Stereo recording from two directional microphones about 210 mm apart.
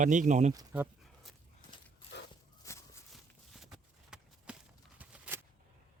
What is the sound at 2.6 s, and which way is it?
Walk, 15° left (ahead or behind).